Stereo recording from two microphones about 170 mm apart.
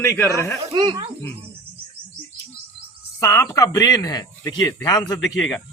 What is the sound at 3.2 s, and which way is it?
A man's voice, 15° left (ahead or behind).